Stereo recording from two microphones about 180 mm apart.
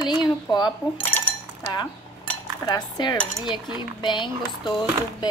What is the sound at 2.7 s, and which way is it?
Speech, 25° left (ahead or behind).